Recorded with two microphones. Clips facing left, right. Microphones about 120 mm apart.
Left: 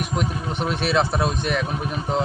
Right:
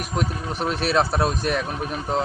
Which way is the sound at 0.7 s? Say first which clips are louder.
Even; 40° right (ahead or behind).